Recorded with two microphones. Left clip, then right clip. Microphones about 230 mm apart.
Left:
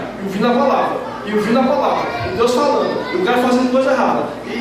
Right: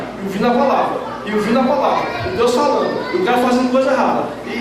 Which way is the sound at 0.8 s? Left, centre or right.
Centre.